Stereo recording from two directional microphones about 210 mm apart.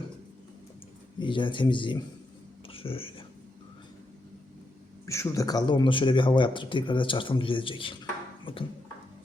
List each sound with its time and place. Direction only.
1.2 s speech: 25° left (ahead or behind)
2.6 s a sound: 25° left (ahead or behind)
5.0 s speech: 15° left (ahead or behind)